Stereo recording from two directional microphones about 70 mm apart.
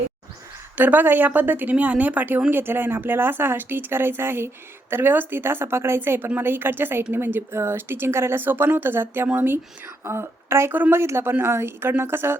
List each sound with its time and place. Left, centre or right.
0.8 s a woman's voice: right
10.7 s speech: right
11.0 s speech: right